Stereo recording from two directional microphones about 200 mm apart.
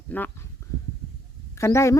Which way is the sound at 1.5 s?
15° left (ahead or behind).